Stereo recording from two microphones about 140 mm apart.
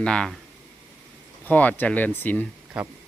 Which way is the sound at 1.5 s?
10° left (ahead or behind).